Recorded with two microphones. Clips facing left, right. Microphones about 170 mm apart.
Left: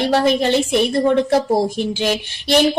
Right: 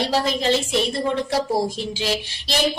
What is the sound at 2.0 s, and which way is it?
Speech, 60° left (ahead or behind).